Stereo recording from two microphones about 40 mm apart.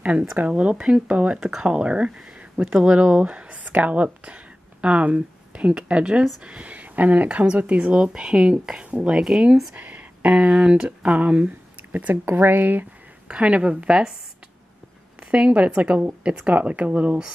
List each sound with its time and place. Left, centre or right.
0.5 s speech: right
1.4 s speech: centre
9.1 s speech: centre
9.8 s a sound: right
10.2 s speech: right
12.4 s speech: right
13.3 s speech: right
15.3 s speech: right
15.9 s speech: right